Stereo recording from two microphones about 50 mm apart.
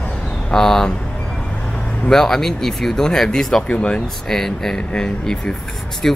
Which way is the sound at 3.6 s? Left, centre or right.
Left.